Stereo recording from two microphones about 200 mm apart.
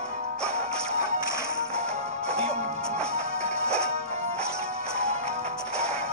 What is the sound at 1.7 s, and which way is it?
Music, 30° right (ahead or behind).